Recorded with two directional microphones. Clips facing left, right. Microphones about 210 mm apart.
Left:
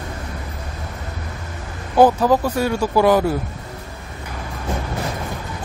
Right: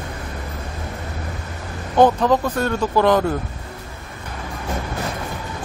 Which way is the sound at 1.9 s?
5° left (ahead or behind).